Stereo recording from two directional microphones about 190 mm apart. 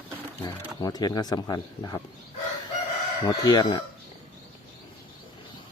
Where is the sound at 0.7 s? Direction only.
20° left (ahead or behind).